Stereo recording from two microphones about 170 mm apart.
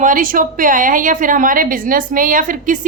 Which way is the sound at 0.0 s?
50° right (ahead or behind).